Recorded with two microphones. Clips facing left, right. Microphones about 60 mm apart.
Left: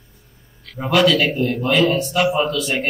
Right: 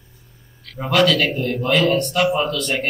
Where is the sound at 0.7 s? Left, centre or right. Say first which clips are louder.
Left 1 dB; centre.